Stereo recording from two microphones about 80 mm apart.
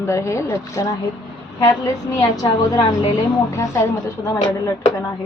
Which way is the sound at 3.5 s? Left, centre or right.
Left.